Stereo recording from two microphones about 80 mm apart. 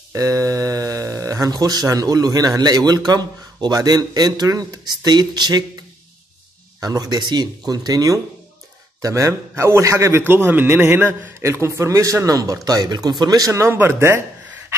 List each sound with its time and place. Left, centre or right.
0.1 s speech: right
6.8 s a man's voice: right
13.7 s a man's voice: right